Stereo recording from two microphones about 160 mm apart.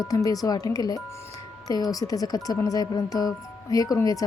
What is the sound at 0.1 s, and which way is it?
Speech, 20° left (ahead or behind).